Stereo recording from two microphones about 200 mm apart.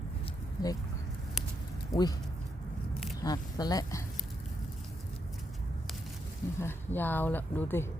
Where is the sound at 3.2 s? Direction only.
20° left (ahead or behind).